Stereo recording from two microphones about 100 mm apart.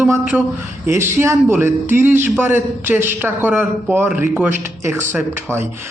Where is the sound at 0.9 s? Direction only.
25° right (ahead or behind).